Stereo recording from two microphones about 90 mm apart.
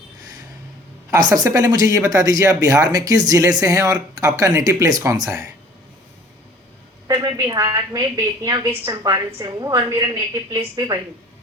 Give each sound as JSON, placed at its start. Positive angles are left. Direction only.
{"t": 1.1, "sound": "speech", "side_deg": -45}
{"t": 7.1, "sound": "speech", "side_deg": -45}